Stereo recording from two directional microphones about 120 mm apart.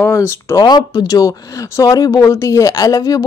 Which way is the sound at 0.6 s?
35° left (ahead or behind).